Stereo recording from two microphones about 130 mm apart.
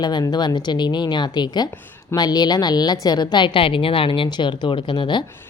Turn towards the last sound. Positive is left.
turn(degrees=35)  # may be behind; listen again after turning